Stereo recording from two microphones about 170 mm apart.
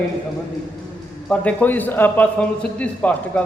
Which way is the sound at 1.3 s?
10° left (ahead or behind).